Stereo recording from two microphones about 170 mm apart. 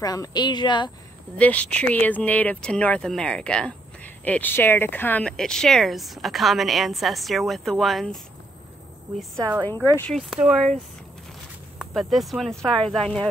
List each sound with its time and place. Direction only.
0.0 s a woman's voice: 20° left (ahead or behind)
1.4 s speech: 10° left (ahead or behind)
9.4 s speech: 20° right (ahead or behind)
9.9 s speech: 5° left (ahead or behind)
11.8 s speech: centre (ahead or behind)